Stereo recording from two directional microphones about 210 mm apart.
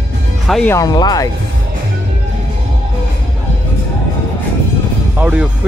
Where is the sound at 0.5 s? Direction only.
5° left (ahead or behind).